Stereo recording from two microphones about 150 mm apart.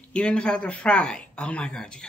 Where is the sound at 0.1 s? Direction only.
5° left (ahead or behind).